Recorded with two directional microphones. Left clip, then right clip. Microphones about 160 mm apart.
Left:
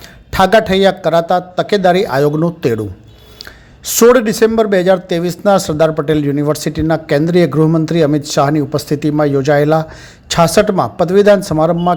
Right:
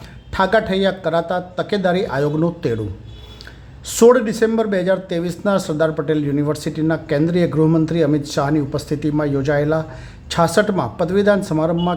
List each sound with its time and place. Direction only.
0.3 s speech: 35° left (ahead or behind)
3.8 s speech: 30° left (ahead or behind)